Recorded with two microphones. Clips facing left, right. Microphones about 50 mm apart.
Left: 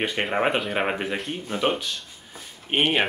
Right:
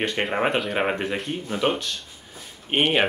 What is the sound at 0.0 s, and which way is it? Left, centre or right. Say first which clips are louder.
Speech: even; centre.